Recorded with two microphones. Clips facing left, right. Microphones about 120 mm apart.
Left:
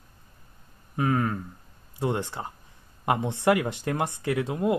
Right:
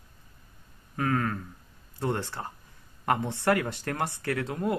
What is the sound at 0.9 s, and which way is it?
Speech, 20° left (ahead or behind).